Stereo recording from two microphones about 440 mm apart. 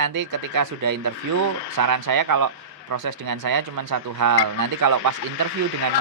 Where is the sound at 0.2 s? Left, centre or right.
Right.